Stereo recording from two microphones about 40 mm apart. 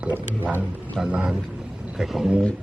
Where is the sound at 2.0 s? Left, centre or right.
Centre.